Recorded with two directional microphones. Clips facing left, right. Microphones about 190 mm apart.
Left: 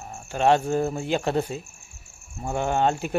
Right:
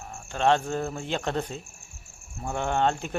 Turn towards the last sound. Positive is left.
turn(degrees=10)  # may be behind; listen again after turning